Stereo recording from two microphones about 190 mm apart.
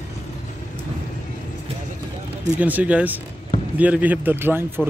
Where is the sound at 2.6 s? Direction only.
10° right (ahead or behind).